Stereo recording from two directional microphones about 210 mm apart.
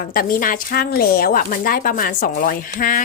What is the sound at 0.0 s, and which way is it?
Speech, 45° left (ahead or behind).